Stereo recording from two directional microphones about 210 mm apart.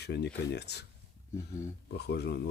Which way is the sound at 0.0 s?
50° left (ahead or behind).